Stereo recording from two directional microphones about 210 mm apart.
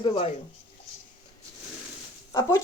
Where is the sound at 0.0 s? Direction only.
25° left (ahead or behind).